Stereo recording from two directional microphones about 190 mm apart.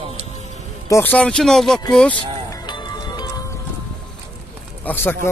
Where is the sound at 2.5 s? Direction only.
20° left (ahead or behind).